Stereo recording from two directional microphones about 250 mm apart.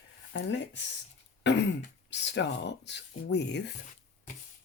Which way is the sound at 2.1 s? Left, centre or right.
Left.